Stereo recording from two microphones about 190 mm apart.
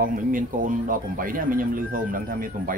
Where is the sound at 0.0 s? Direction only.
45° right (ahead or behind).